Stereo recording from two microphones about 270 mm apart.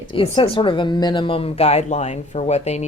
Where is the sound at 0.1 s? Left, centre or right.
Centre.